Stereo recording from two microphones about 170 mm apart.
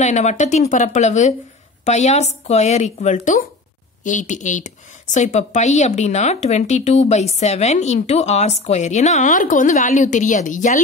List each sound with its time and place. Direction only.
0.0 s speech: 45° left (ahead or behind)